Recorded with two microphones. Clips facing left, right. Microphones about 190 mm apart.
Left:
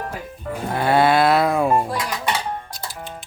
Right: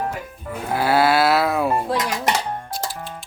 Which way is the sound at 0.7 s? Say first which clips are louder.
Left 1 dB; 5° right (ahead or behind).